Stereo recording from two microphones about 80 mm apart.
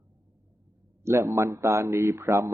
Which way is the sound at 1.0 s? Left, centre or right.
Right.